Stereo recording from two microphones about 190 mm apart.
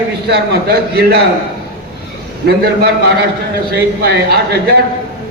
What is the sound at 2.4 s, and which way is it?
A man's voice, 60° right (ahead or behind).